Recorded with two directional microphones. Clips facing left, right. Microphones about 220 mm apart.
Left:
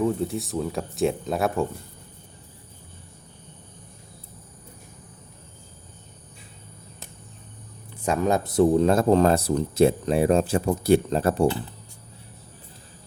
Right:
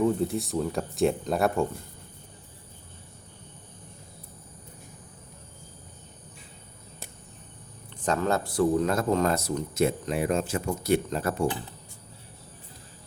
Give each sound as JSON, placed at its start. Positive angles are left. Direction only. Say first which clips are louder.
{"t": 0.0, "sound": "speech", "louder": "even", "side_deg": 0}
{"t": 8.0, "sound": "speech", "louder": "left 3 dB", "side_deg": 15}